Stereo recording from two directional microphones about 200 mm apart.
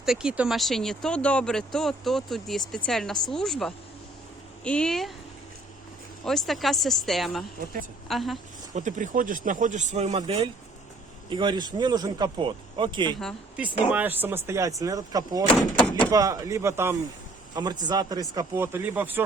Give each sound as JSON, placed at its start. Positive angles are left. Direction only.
{"t": 0.0, "sound": "speech", "side_deg": -5}
{"t": 6.2, "sound": "speech", "side_deg": 0}
{"t": 8.7, "sound": "speech", "side_deg": -40}
{"t": 13.1, "sound": "speech", "side_deg": 0}